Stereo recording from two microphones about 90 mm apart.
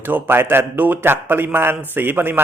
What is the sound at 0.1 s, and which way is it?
A man's voice, 25° right (ahead or behind).